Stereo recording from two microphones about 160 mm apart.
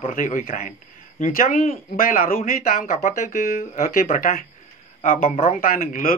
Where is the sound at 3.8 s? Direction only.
65° left (ahead or behind).